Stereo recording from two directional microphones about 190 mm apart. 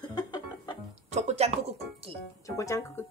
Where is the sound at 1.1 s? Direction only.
35° right (ahead or behind).